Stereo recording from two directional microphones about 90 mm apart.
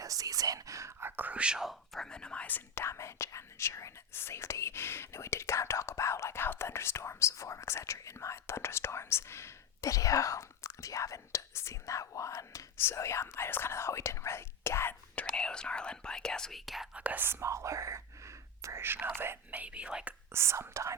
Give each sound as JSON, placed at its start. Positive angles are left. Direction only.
{"t": 0.0, "sound": "speech", "side_deg": -40}
{"t": 15.1, "sound": "speech", "side_deg": 15}
{"t": 16.9, "sound": "speech", "side_deg": -15}
{"t": 17.4, "sound": "speech", "side_deg": -35}
{"t": 20.3, "sound": "speech", "side_deg": -30}